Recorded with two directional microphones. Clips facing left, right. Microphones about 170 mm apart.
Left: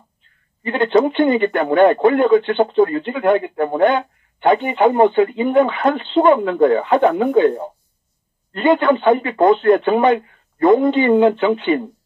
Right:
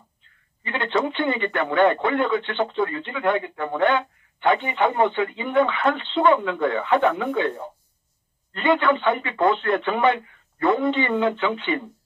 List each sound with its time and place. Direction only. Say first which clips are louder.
0.7 s speech: left 9 dB; 35° left (ahead or behind)